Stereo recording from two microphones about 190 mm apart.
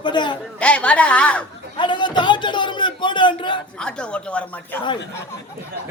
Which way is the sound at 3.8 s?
5° left (ahead or behind).